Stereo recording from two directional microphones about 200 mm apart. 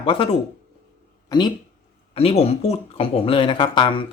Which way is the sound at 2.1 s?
30° left (ahead or behind).